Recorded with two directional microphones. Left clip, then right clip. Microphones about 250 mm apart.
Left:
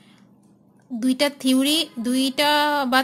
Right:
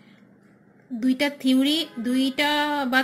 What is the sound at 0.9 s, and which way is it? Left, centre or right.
A woman's voice, centre.